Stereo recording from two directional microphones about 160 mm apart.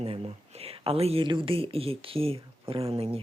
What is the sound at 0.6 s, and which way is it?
Speech, 40° right (ahead or behind).